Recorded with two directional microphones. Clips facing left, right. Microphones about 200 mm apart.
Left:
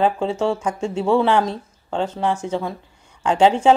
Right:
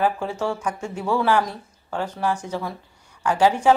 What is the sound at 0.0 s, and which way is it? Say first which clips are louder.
A woman's voice: left 4 dB; 20° left (ahead or behind).